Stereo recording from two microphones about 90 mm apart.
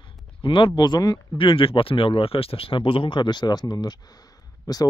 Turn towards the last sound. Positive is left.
turn(degrees=45)  # may be behind; listen again after turning